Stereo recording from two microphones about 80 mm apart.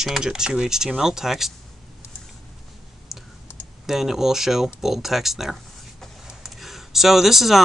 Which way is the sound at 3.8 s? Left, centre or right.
Centre.